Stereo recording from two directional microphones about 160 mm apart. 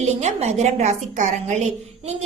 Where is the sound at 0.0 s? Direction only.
45° right (ahead or behind).